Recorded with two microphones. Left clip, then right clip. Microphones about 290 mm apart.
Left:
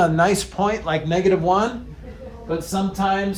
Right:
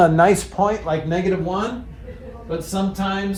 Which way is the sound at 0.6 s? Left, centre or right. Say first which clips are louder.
Right 2 dB; centre.